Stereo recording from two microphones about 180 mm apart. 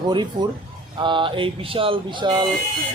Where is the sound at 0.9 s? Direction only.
25° right (ahead or behind).